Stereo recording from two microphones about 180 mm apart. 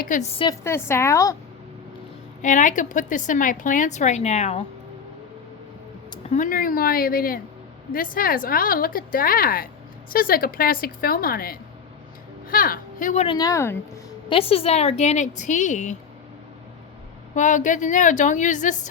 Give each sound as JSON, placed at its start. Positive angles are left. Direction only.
{"t": 0.0, "sound": "a woman's voice", "side_deg": 45}
{"t": 0.6, "sound": "a woman's voice", "side_deg": 15}
{"t": 2.4, "sound": "a woman's voice", "side_deg": 45}
{"t": 6.3, "sound": "a woman's voice", "side_deg": 50}
{"t": 13.2, "sound": "speech", "side_deg": 20}
{"t": 14.3, "sound": "a woman's voice", "side_deg": 30}
{"t": 17.3, "sound": "a woman's voice", "side_deg": 45}